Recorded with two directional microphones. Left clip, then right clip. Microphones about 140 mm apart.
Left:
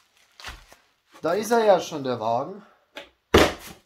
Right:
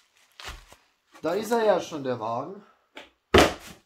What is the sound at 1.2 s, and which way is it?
Speech, 35° left (ahead or behind).